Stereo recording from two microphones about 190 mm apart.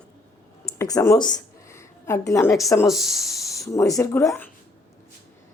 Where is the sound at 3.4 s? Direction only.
15° left (ahead or behind).